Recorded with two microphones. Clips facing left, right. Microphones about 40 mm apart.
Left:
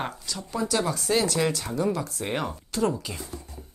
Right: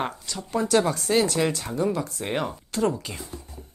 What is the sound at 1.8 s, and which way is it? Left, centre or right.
Speech, centre.